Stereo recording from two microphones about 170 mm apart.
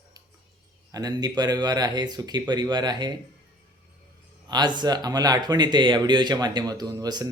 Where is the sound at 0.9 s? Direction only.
20° right (ahead or behind).